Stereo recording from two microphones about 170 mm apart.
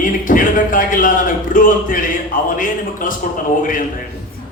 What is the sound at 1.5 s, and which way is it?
Speech, 55° left (ahead or behind).